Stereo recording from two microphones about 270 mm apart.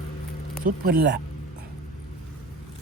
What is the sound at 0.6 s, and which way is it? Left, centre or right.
Speech, right.